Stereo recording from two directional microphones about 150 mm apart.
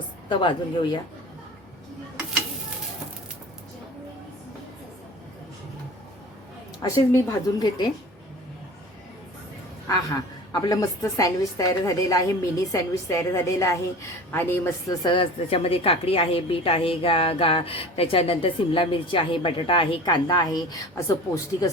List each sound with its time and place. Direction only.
0.3 s a woman's voice: 30° left (ahead or behind)
6.8 s a woman's voice: 20° left (ahead or behind)
10.5 s a woman's voice: 25° left (ahead or behind)
15.0 s a woman's voice: 35° left (ahead or behind)